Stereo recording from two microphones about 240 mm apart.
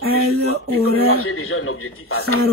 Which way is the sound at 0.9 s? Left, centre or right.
Left.